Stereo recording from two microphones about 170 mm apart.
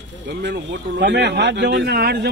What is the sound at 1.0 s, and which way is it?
A man's voice, 90° right.